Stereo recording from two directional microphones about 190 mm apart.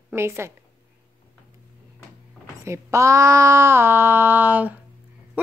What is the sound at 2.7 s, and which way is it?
Speech, 15° right (ahead or behind).